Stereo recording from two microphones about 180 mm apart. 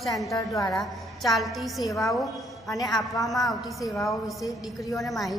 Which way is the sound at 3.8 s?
15° left (ahead or behind).